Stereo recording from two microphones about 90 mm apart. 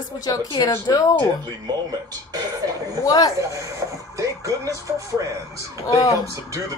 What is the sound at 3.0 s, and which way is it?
Speech, 45° left (ahead or behind).